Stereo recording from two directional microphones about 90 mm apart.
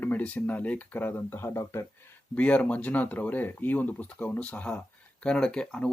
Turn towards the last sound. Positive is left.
turn(degrees=10)  # may be behind; listen again after turning